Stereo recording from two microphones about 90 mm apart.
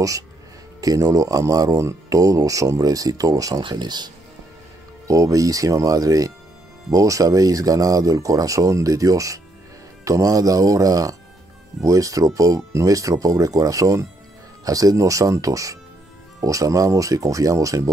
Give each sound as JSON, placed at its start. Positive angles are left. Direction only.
{"t": 0.7, "sound": "speech", "side_deg": -40}
{"t": 3.6, "sound": "speech", "side_deg": -55}
{"t": 5.0, "sound": "speech", "side_deg": -40}